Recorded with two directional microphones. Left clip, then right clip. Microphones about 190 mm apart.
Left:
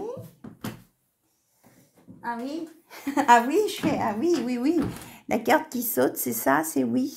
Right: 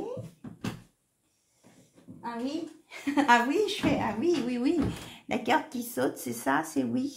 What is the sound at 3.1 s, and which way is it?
Speech, 50° left (ahead or behind).